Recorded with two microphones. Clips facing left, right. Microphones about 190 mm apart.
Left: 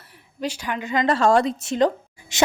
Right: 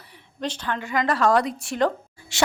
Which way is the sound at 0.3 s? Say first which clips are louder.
Left 1 dB; 10° left (ahead or behind).